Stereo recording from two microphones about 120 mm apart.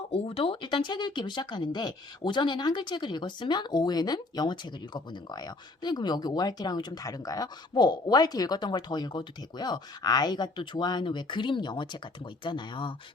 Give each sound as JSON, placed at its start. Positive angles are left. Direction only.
{"t": 0.1, "sound": "speech", "side_deg": 55}